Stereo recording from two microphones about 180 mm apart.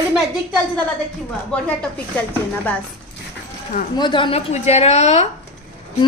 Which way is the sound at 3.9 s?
25° left (ahead or behind).